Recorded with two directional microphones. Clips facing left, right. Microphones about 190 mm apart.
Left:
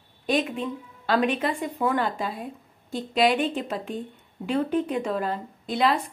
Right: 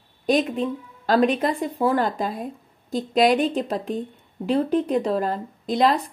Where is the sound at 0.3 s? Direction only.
40° right (ahead or behind).